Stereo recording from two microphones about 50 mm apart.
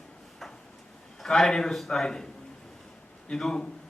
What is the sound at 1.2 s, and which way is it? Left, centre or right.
A man's voice, centre.